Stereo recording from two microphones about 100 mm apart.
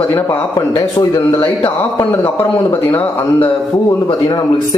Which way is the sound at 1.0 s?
40° left (ahead or behind).